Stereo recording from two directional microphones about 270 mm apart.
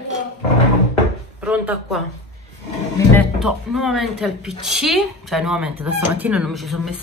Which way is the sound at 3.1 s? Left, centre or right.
Centre.